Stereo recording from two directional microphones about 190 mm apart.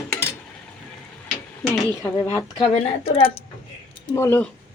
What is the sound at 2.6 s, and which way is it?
Speech, 30° left (ahead or behind).